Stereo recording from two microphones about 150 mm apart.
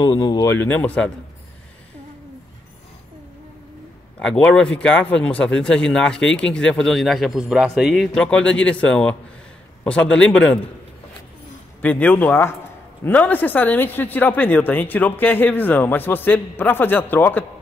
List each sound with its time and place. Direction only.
0.0 s speech: 30° left (ahead or behind); by 1.1 s 10° left (ahead or behind)
4.2 s speech: 5° left (ahead or behind)
11.8 s speech: 10° left (ahead or behind)